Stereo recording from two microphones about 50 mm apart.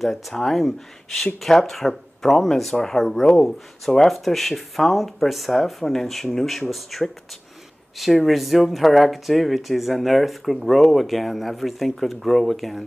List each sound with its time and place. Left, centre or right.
0.0 s speech: centre
3.3 s speech: centre
3.8 s speech: centre
8.3 s speech: centre